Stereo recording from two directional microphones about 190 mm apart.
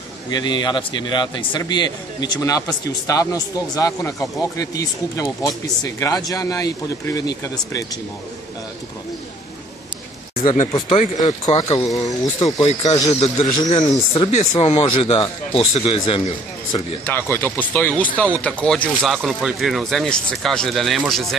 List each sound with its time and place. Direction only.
0.3 s a man's voice: 20° left (ahead or behind)
10.4 s speech: 40° left (ahead or behind)
17.0 s speech: 10° left (ahead or behind)